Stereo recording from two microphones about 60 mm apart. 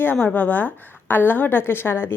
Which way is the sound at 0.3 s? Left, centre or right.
Left.